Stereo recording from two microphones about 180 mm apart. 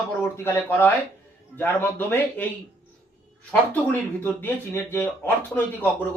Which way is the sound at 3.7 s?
10° left (ahead or behind).